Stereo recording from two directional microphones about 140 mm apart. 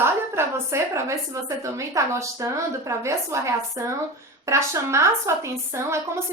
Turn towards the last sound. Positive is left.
turn(degrees=-20)  # may be behind; listen again after turning